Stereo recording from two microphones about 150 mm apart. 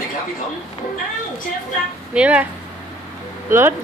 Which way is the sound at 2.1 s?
10° right (ahead or behind).